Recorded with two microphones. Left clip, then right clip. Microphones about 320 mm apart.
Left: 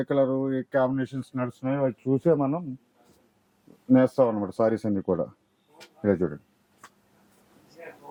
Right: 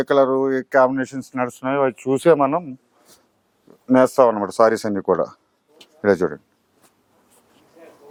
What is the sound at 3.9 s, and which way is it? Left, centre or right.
Speech, centre.